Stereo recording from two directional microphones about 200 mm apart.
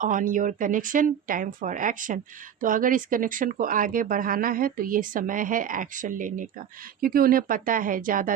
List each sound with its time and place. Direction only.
0.0 s speech: 40° right (ahead or behind)